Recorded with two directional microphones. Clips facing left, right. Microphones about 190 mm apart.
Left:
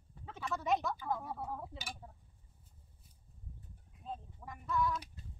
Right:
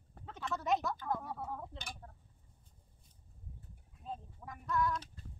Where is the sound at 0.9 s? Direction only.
Centre (ahead or behind).